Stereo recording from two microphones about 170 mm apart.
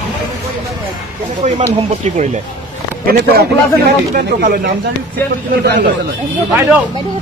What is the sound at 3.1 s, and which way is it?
Speech, 70° right (ahead or behind).